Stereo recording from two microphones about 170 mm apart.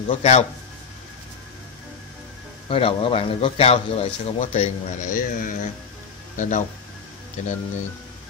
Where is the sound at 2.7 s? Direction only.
35° left (ahead or behind).